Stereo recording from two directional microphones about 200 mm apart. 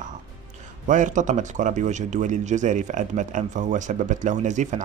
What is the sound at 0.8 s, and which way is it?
Speech, 40° right (ahead or behind).